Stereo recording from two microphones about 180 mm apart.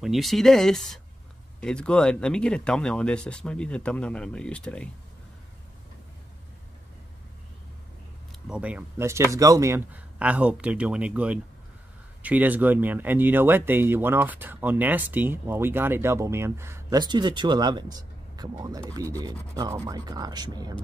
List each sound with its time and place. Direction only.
0.0 s speech: centre (ahead or behind)
8.3 s speech: 5° right (ahead or behind); by 20.7 s 25° right (ahead or behind)